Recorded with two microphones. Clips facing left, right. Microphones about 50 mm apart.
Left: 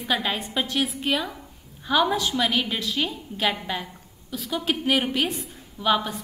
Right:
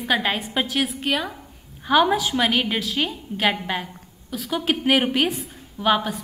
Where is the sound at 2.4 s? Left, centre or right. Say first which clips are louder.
Right 3 dB; right.